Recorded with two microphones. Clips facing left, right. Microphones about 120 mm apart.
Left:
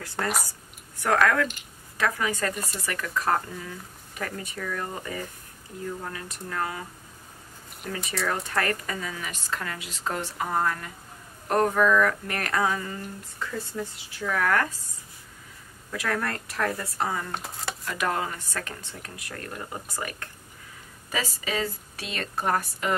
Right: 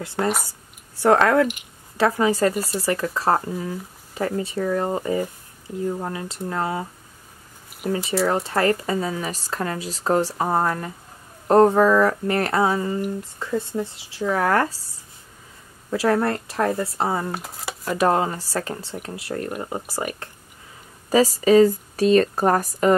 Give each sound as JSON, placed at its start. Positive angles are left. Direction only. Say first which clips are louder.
{"t": 0.0, "sound": "speech", "louder": "right 6 dB", "side_deg": -25}
{"t": 7.9, "sound": "speech", "louder": "right 8 dB", "side_deg": -30}
{"t": 15.9, "sound": "speech", "louder": "right 9 dB", "side_deg": -30}
{"t": 17.3, "sound": "speech", "louder": "right 3 dB", "side_deg": -5}
{"t": 17.8, "sound": "speech", "louder": "right 9 dB", "side_deg": -30}
{"t": 21.1, "sound": "speech", "louder": "right 15 dB", "side_deg": -35}